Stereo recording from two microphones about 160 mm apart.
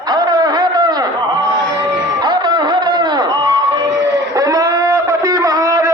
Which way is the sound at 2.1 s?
25° right (ahead or behind).